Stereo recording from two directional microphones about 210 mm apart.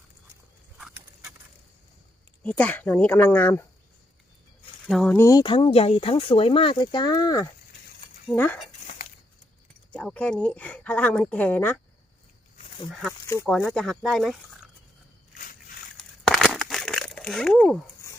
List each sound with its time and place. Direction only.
2.4 s speech: 5° left (ahead or behind)
4.9 s speech: centre (ahead or behind)
5.1 s speech: 15° left (ahead or behind)
9.9 s speech: 5° left (ahead or behind)
13.2 s speech: 10° left (ahead or behind)
16.0 s crumpling: centre (ahead or behind)